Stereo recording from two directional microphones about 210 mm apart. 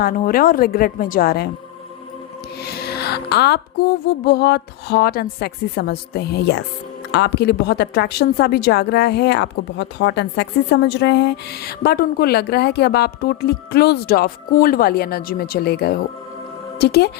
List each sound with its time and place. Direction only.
0.0 s a woman's voice: 40° left (ahead or behind)
2.6 s a woman's voice: 50° left (ahead or behind)